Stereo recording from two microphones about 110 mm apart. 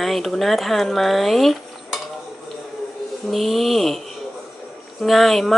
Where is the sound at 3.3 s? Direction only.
Centre (ahead or behind).